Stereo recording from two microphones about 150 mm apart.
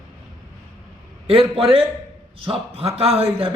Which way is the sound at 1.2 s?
40° right (ahead or behind).